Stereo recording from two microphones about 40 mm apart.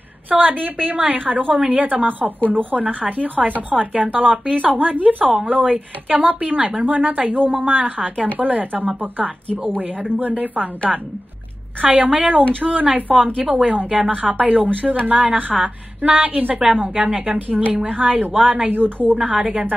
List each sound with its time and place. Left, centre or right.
0.3 s a woman's voice: right
11.8 s a woman's voice: right
13.1 s a woman's voice: centre
14.4 s a woman's voice: right
19.1 s a woman's voice: right